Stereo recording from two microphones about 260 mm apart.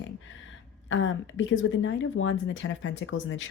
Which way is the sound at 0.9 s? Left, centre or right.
Left.